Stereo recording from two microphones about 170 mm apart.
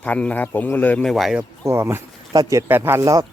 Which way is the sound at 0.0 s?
10° left (ahead or behind).